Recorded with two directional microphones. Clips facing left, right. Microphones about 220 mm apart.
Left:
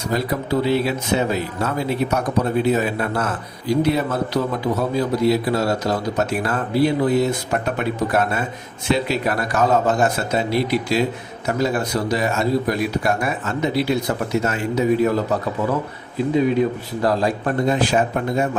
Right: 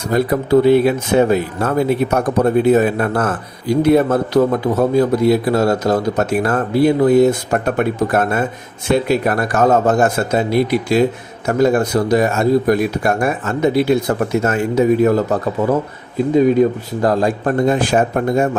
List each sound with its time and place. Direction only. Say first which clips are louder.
0.1 s speech: right 8 dB; 50° right (ahead or behind)
16.3 s speech: right 6 dB; 45° right (ahead or behind)